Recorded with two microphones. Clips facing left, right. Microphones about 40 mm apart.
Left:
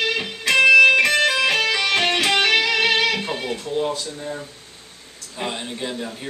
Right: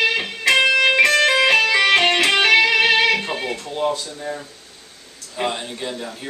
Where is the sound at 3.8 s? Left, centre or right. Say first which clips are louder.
Right 3 dB; right.